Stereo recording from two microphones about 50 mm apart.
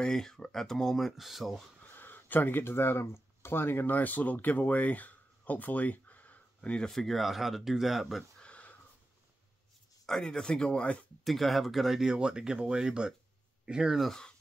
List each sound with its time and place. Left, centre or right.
0.0 s speech: centre
2.0 s speech: left
6.9 s speech: centre
8.2 s a sound: left
10.0 s speech: centre
11.2 s speech: centre
12.1 s speech: centre